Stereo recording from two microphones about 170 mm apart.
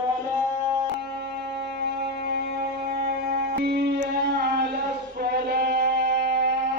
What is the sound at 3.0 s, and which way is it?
Music, 70° right (ahead or behind).